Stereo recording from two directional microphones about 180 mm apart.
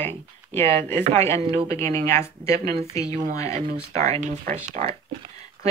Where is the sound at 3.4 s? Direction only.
40° right (ahead or behind).